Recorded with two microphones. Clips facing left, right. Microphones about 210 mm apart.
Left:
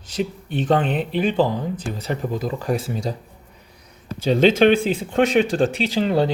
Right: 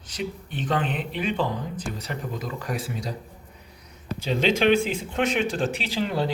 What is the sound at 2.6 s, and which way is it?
Speech, 30° left (ahead or behind).